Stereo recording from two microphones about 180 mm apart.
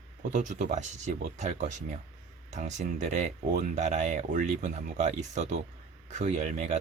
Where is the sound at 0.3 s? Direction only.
45° right (ahead or behind).